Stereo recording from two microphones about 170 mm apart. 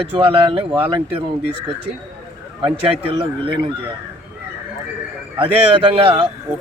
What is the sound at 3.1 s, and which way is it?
Speech, 30° right (ahead or behind).